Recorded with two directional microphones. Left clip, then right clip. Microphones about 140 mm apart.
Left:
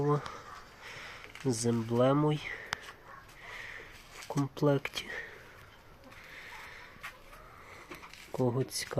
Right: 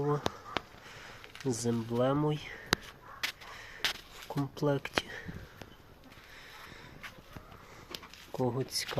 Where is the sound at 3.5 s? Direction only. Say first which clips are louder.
Right 10 dB; 20° left (ahead or behind).